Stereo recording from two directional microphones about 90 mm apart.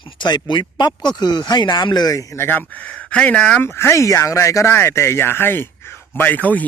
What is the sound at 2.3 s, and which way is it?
Speech, 25° left (ahead or behind).